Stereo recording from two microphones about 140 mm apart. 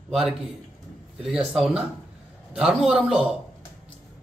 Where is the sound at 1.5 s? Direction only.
Centre (ahead or behind).